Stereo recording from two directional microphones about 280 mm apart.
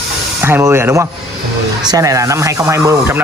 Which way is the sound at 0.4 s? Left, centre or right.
Centre.